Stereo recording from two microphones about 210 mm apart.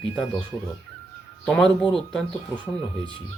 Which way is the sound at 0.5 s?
15° left (ahead or behind).